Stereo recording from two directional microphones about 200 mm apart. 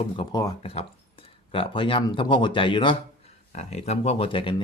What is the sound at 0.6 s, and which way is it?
Speech, 30° left (ahead or behind).